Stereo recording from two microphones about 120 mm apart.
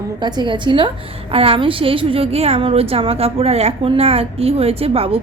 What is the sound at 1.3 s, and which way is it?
A woman's voice, 55° right (ahead or behind).